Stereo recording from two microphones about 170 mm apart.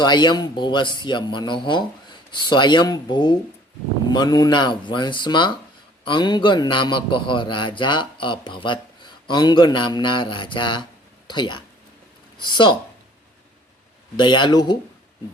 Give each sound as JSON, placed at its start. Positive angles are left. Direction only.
{"t": 0.0, "sound": "a man's voice", "side_deg": 25}
{"t": 14.2, "sound": "a man's voice", "side_deg": 25}